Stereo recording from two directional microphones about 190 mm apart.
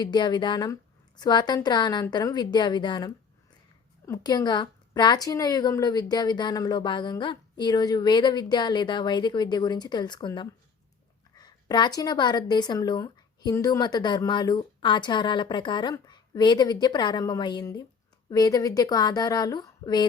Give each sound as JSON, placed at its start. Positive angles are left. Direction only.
{"t": 0.0, "sound": "speech", "side_deg": 20}